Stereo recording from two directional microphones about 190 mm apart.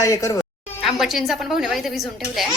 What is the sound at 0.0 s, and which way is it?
Speech, 15° left (ahead or behind).